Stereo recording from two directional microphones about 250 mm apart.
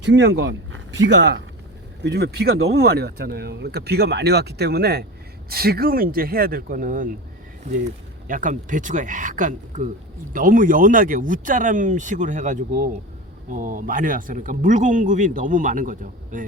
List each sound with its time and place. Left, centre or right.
0.0 s speech: right
8.3 s speech: right